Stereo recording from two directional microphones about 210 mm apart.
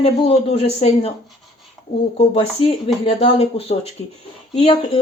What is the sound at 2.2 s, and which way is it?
Speech, 25° left (ahead or behind).